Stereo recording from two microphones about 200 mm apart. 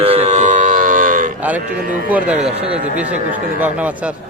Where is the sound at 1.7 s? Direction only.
45° right (ahead or behind).